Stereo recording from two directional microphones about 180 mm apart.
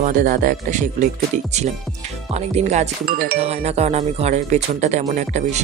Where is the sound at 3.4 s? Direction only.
35° right (ahead or behind).